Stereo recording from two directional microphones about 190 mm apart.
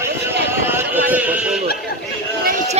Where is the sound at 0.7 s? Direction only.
10° right (ahead or behind).